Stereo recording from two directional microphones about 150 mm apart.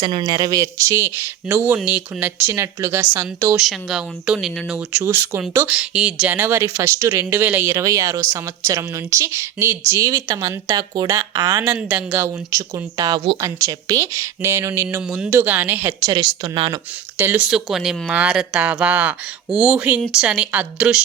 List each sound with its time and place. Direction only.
0.0 s speech: 30° right (ahead or behind)
3.5 s a woman's voice: centre (ahead or behind); by 16.8 s 30° right (ahead or behind)
17.2 s speech: 10° right (ahead or behind)